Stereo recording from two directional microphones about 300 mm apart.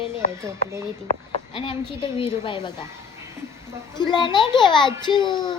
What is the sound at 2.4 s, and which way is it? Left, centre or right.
Speech, centre.